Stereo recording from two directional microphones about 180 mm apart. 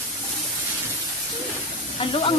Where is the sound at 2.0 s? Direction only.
30° left (ahead or behind).